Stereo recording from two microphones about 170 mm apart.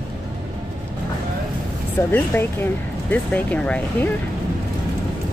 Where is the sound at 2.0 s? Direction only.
15° left (ahead or behind).